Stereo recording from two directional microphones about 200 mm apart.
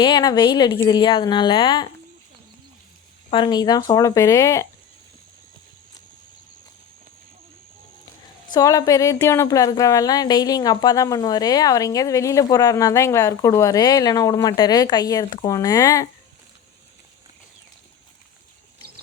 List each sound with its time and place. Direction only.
0.0 s a woman's voice: 20° left (ahead or behind)
3.2 s a woman's voice: 25° left (ahead or behind)
8.5 s a woman's voice: 20° left (ahead or behind)